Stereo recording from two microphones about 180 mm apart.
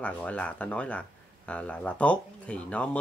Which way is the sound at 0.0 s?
10° left (ahead or behind).